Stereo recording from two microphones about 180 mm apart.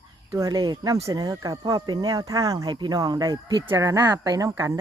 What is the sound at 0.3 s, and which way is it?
Speech, 20° right (ahead or behind).